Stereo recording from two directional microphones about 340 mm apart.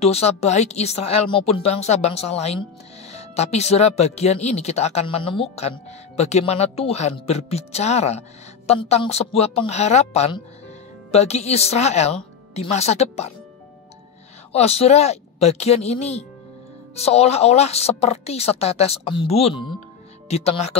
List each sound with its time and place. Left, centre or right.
0.0 s a woman's voice: centre
14.5 s a woman's voice: centre